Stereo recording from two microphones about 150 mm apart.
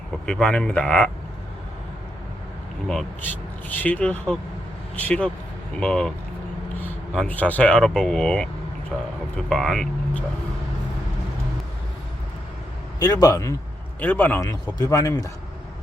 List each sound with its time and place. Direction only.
0.3 s speech: 5° left (ahead or behind)
2.8 s speech: 5° left (ahead or behind)
13.0 s speech: 25° left (ahead or behind)
14.0 s speech: 10° left (ahead or behind)